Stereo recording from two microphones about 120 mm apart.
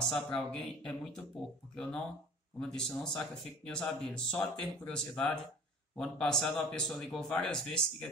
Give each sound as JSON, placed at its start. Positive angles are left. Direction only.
{"t": 0.0, "sound": "a man's voice", "side_deg": 5}